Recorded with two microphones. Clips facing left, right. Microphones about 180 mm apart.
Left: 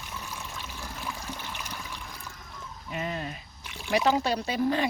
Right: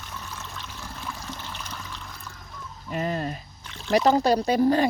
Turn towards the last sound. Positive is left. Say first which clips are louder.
# right 6 dB
turn(degrees=-40)  # may be behind; listen again after turning